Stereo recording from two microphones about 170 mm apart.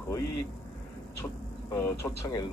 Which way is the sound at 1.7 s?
15° left (ahead or behind).